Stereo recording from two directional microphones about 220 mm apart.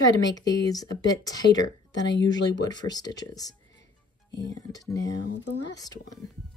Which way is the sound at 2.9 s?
15° left (ahead or behind).